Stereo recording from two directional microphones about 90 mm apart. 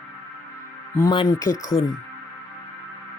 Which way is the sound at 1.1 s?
55° left (ahead or behind).